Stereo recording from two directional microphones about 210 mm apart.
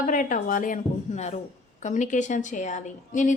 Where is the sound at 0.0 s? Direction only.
40° left (ahead or behind).